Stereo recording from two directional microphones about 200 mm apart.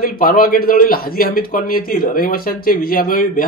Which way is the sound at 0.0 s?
45° left (ahead or behind).